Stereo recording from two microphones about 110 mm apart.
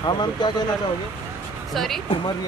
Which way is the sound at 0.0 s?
40° left (ahead or behind).